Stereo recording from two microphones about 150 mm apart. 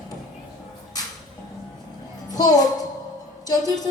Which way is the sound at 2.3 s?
25° left (ahead or behind).